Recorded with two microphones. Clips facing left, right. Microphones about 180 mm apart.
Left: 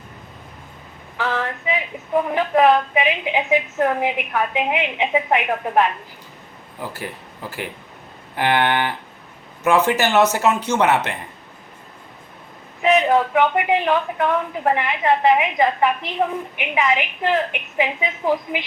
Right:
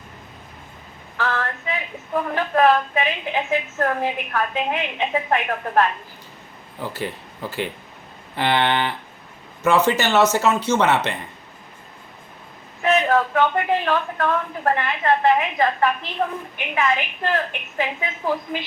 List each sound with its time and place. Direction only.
1.1 s a sound: 15° left (ahead or behind)
2.3 s a woman's voice: 15° left (ahead or behind)
8.4 s a woman's voice: 10° left (ahead or behind)
12.8 s a woman's voice: 15° left (ahead or behind)